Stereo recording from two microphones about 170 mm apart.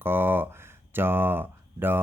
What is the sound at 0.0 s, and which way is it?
Speech, 15° right (ahead or behind).